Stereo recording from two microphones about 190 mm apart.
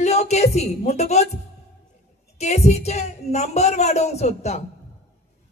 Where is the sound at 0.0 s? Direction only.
35° left (ahead or behind).